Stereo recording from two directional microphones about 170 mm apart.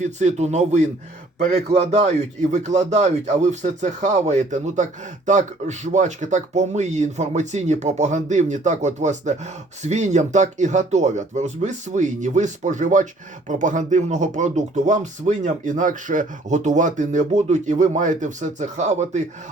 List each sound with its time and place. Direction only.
0.0 s speech: 45° right (ahead or behind)